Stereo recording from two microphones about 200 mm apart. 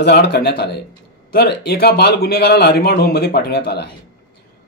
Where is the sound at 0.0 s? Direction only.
55° left (ahead or behind).